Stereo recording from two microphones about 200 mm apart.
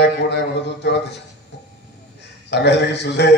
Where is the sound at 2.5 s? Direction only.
60° left (ahead or behind).